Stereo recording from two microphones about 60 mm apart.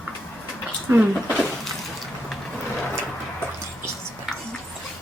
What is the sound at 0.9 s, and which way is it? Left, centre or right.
Speech, right.